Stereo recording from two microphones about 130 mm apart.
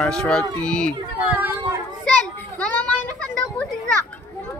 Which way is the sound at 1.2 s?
15° right (ahead or behind).